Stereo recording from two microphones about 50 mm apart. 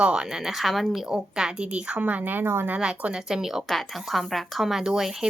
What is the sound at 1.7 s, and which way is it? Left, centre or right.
Speech, right.